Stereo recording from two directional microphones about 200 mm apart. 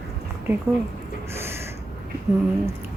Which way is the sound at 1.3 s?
10° right (ahead or behind).